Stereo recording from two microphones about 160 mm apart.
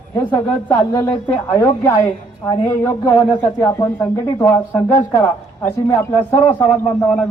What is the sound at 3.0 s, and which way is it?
Speech, 25° left (ahead or behind).